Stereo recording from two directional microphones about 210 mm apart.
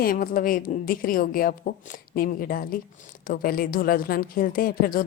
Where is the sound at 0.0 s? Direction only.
45° left (ahead or behind).